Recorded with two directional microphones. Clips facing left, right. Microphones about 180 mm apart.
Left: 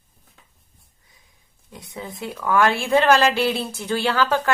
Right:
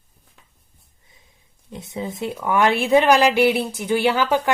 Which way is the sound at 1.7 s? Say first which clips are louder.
Right 6 dB; 20° right (ahead or behind).